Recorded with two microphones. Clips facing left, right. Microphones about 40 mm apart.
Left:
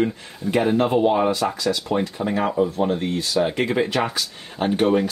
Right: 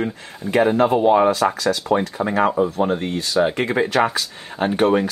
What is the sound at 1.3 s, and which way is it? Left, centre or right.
Speech, right.